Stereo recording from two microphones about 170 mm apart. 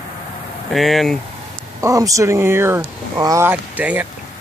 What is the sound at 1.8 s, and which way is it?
Speech, 20° right (ahead or behind).